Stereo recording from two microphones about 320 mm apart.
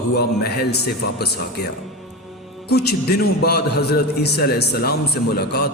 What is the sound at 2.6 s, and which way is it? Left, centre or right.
A man's voice, left.